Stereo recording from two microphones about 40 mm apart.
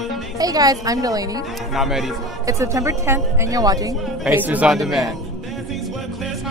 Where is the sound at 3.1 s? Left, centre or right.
Right.